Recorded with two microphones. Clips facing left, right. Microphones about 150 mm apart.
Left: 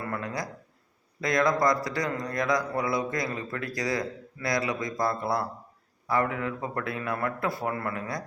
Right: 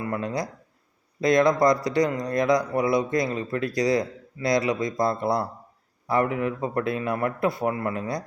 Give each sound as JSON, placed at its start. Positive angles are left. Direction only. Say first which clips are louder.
{"t": 0.0, "sound": "a man's voice", "louder": "right 5 dB", "side_deg": -20}